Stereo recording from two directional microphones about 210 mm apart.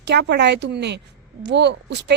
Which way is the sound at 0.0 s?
55° right (ahead or behind).